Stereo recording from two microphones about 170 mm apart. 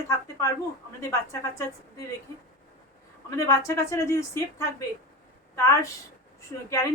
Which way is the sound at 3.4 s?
20° left (ahead or behind).